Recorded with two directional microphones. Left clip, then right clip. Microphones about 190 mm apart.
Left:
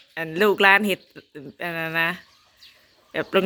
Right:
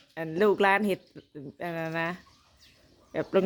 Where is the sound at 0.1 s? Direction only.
5° right (ahead or behind).